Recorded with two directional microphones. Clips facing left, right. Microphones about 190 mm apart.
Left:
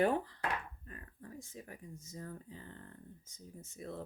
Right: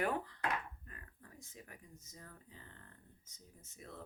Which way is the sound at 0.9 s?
30° left (ahead or behind).